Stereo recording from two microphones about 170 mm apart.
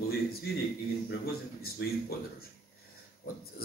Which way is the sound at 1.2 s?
65° left (ahead or behind).